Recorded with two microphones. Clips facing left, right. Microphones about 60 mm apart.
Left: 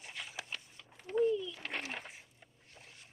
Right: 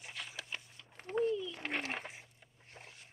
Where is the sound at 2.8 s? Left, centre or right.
Right.